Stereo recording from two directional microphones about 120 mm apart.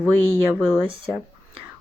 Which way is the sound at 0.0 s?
15° right (ahead or behind).